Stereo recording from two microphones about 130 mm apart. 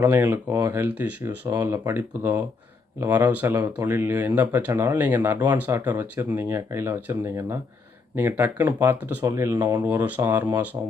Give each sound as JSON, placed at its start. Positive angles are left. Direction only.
{"t": 0.0, "sound": "speech", "side_deg": -15}